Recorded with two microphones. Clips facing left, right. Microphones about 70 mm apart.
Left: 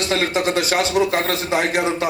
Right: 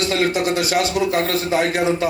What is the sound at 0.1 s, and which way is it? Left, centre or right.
A man's voice, left.